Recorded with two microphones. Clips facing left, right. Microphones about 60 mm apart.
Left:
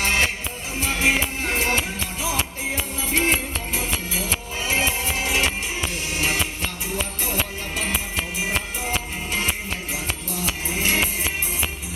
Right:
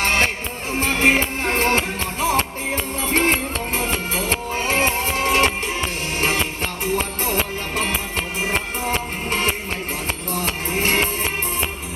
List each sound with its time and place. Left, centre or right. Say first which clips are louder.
0.0 s music: right 3 dB; right
9.3 s music: right 3 dB; right